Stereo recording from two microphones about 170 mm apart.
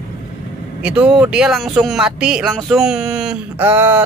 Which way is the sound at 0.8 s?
5° right (ahead or behind).